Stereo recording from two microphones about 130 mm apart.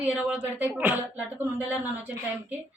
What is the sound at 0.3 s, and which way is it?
A woman's voice, 15° right (ahead or behind).